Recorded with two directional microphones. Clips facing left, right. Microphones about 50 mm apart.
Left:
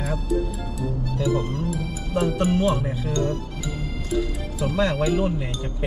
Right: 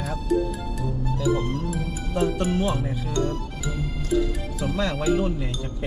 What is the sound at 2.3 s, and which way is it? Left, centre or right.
Speech, left.